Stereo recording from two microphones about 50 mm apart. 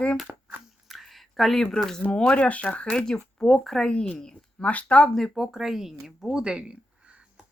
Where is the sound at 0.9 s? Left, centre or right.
Centre.